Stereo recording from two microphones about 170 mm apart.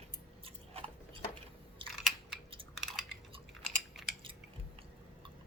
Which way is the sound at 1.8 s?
30° right (ahead or behind).